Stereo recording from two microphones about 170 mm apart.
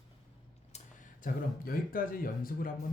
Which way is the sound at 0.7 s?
50° left (ahead or behind).